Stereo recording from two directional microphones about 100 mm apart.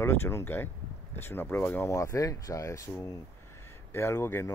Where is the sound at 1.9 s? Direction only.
30° left (ahead or behind).